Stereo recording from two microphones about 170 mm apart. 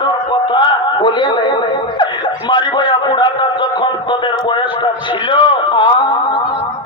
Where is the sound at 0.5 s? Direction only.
30° left (ahead or behind).